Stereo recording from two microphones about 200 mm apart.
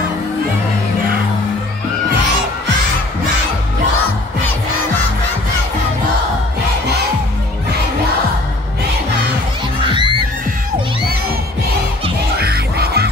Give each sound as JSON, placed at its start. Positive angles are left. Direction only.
{"t": 12.4, "sound": "music", "side_deg": -50}